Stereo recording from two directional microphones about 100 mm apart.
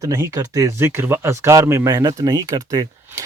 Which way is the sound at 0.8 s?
25° right (ahead or behind).